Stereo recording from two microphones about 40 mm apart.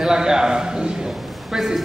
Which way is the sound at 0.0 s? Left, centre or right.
Centre.